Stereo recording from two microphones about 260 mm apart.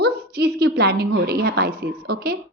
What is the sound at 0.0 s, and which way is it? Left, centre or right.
A woman's voice, right.